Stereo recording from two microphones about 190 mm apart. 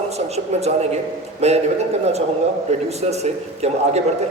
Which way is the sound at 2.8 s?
35° right (ahead or behind).